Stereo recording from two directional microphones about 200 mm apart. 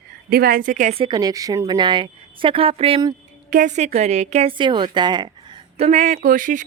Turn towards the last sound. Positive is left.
turn(degrees=-40)  # may be behind; listen again after turning